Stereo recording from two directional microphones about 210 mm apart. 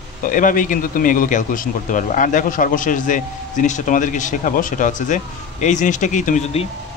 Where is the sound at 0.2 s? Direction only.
40° left (ahead or behind).